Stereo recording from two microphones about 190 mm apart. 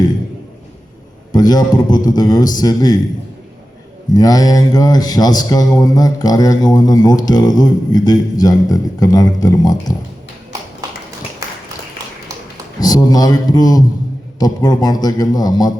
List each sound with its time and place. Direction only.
1.3 s speech: 20° left (ahead or behind)
4.1 s speech: 20° left (ahead or behind)
12.8 s speech: 20° left (ahead or behind)